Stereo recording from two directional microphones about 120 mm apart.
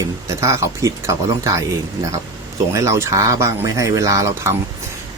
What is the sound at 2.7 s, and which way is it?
Speech, 25° right (ahead or behind).